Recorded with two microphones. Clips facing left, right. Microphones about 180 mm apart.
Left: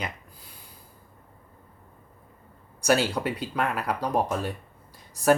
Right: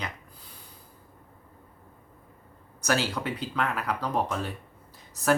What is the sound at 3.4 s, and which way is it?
Speech, 10° left (ahead or behind).